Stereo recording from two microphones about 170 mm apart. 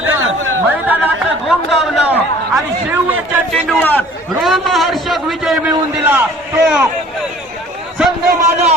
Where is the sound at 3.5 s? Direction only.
5° left (ahead or behind).